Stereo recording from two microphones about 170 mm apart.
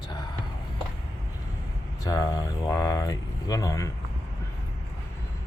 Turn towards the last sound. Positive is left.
turn(degrees=20)  # may be behind; listen again after turning